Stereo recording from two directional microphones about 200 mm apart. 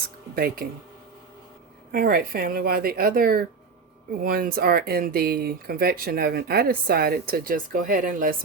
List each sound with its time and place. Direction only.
0.3 s speech: 50° right (ahead or behind)
1.9 s speech: 50° right (ahead or behind)